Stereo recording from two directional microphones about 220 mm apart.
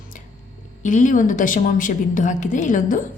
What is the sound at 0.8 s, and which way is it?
A woman's voice, 35° left (ahead or behind).